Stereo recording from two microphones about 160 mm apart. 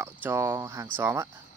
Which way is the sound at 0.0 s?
15° right (ahead or behind).